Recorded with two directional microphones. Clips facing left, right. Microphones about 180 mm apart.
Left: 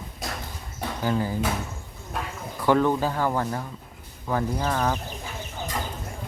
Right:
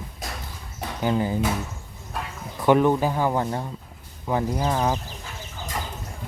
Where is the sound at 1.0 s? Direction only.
20° right (ahead or behind).